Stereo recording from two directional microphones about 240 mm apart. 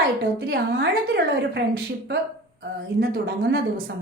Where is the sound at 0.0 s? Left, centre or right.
Right.